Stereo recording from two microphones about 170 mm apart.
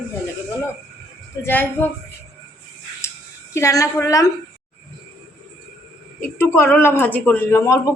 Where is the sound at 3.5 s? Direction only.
20° left (ahead or behind).